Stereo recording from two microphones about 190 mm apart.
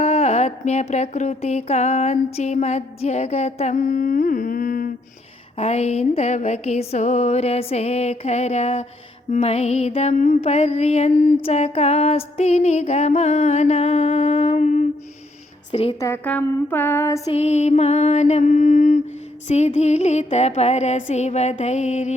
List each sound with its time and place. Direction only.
0.0 s music: 35° left (ahead or behind)
5.5 s music: 30° left (ahead or behind)
15.7 s music: 30° left (ahead or behind)
16.0 s a sound: 15° left (ahead or behind)
17.2 s music: 35° left (ahead or behind)